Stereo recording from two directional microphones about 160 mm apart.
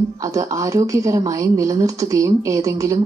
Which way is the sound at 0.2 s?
20° right (ahead or behind).